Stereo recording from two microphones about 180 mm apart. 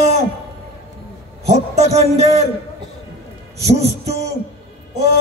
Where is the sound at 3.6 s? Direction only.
35° right (ahead or behind).